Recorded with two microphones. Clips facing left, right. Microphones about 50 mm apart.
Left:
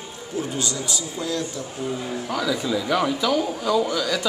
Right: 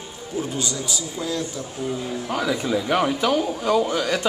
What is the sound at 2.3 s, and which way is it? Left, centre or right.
Speech, right.